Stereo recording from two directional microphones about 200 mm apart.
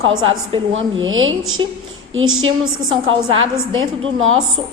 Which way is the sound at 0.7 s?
75° right (ahead or behind).